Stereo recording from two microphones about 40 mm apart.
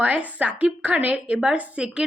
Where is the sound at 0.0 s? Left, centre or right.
Right.